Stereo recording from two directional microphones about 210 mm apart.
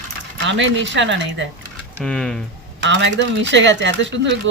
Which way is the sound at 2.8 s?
55° right (ahead or behind).